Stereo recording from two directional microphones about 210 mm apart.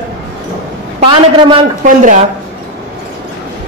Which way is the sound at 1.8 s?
40° right (ahead or behind).